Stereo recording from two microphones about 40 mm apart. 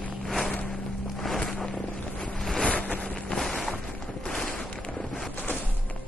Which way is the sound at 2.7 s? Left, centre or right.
Left.